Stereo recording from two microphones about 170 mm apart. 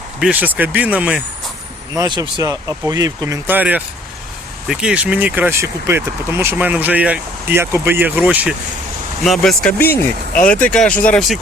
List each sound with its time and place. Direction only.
0.2 s speech: 10° right (ahead or behind)
2.0 s speech: 25° right (ahead or behind); by 11.3 s 5° left (ahead or behind)